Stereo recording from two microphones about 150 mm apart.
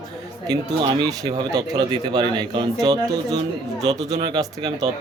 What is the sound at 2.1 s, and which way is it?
Speech, 30° right (ahead or behind).